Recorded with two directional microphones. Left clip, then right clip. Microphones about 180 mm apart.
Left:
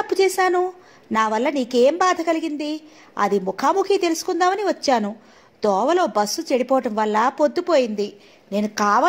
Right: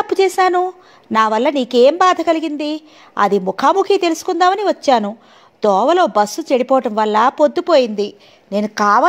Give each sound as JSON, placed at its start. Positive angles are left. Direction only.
{"t": 0.0, "sound": "a woman's voice", "side_deg": -40}